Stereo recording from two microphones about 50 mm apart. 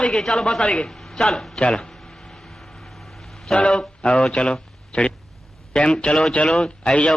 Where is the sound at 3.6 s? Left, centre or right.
Centre.